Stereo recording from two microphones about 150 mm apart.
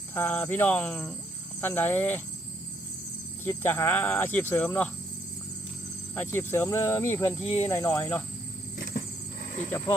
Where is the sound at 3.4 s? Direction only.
15° left (ahead or behind).